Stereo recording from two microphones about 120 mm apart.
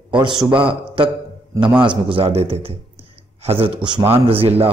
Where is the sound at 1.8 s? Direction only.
45° right (ahead or behind).